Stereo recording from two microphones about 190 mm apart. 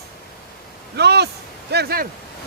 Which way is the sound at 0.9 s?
60° right (ahead or behind).